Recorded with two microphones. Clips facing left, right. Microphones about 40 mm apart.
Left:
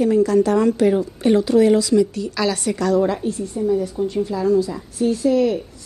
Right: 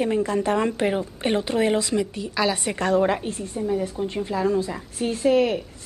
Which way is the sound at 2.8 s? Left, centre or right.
Right.